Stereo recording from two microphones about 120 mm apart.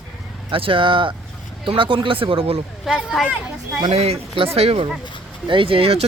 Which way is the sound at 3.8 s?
55° right (ahead or behind).